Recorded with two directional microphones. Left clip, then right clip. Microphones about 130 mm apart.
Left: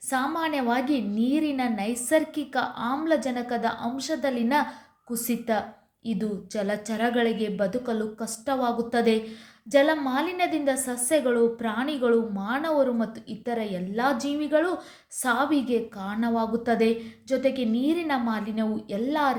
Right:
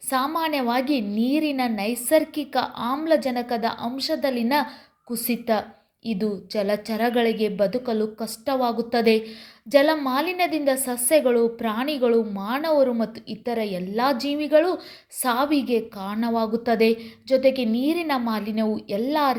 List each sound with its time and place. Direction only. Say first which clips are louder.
0.1 s a woman's voice: right 3 dB; 25° right (ahead or behind)